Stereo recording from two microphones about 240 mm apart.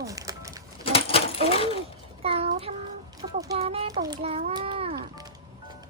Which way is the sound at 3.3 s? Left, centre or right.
Centre.